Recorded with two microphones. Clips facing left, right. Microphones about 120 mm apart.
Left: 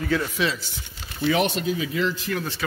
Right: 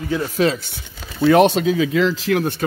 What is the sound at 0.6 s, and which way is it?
Speech, 65° right (ahead or behind).